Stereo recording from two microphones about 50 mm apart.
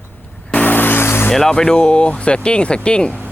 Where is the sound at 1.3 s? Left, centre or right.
Centre.